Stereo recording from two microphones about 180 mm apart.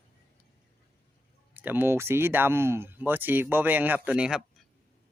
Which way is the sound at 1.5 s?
10° right (ahead or behind).